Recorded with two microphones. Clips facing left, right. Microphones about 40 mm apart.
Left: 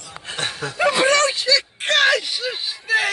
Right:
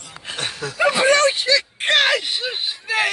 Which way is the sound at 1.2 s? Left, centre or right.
Right.